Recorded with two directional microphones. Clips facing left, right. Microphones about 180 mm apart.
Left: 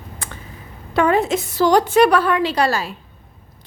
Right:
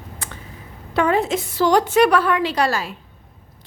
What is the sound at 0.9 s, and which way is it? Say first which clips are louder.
A woman's voice: left 2 dB; 50° left (ahead or behind).